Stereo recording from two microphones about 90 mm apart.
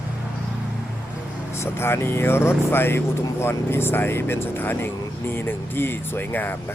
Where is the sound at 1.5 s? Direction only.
30° left (ahead or behind).